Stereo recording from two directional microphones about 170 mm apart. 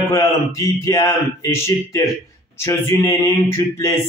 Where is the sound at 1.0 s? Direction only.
15° left (ahead or behind).